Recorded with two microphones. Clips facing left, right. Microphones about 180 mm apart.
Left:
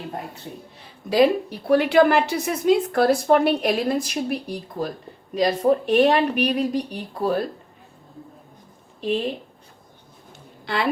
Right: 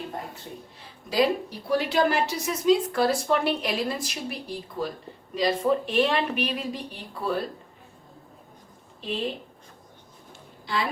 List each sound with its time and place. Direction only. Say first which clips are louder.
1.1 s a woman's voice: left 6 dB; 60° left (ahead or behind); by 7.3 s 45° left (ahead or behind)
10.7 s a woman's voice: left 3 dB; 65° left (ahead or behind)